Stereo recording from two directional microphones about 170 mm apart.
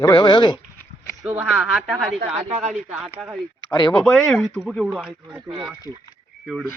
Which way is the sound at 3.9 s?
5° left (ahead or behind).